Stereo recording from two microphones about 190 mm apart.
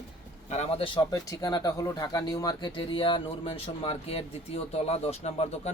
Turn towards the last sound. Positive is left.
turn(degrees=35)  # may be behind; listen again after turning